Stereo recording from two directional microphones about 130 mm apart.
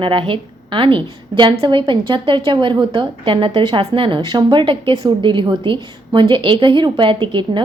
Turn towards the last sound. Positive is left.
turn(degrees=-40)  # may be behind; listen again after turning